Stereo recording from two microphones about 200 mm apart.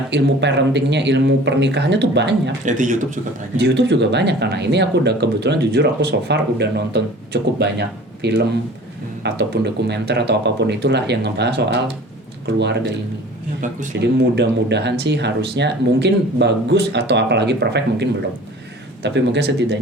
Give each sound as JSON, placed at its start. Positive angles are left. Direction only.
{"t": 0.1, "sound": "speech", "side_deg": -60}
{"t": 2.6, "sound": "speech", "side_deg": -40}
{"t": 3.6, "sound": "speech", "side_deg": -60}
{"t": 13.6, "sound": "speech", "side_deg": -40}
{"t": 14.0, "sound": "speech", "side_deg": -60}